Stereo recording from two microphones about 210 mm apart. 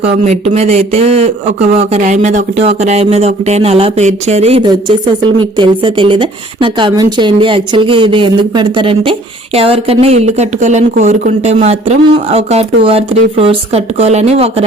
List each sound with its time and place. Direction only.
0.3 s speech: 30° right (ahead or behind)